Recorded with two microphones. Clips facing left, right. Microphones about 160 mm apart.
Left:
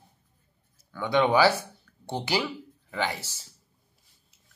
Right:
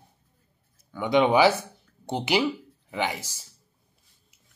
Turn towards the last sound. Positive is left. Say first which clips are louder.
# right 1 dB
turn(degrees=-15)  # may be behind; listen again after turning